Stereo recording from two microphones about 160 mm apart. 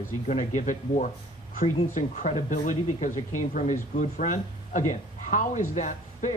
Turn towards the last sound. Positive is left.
turn(degrees=50)  # may be behind; listen again after turning